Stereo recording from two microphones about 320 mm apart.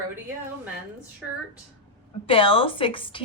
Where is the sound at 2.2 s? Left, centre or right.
Centre.